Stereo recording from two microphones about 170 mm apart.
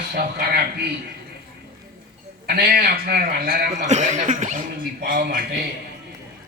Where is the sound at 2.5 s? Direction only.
65° right (ahead or behind).